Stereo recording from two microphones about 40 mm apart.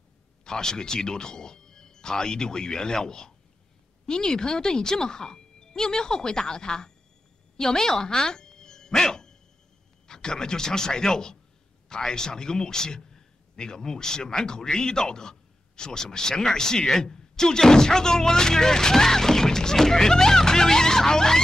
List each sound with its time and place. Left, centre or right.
0.5 s a man's voice: centre
7.5 s a sound: centre
10.0 s a man's voice: centre